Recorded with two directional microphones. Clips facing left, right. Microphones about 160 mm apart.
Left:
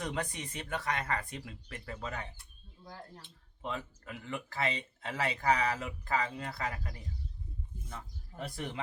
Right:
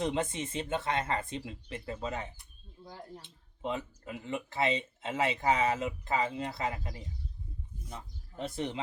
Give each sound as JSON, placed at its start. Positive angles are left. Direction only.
{"t": 0.0, "sound": "speech", "side_deg": -25}